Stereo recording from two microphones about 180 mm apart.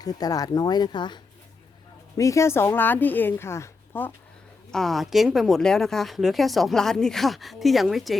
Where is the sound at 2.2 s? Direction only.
15° left (ahead or behind).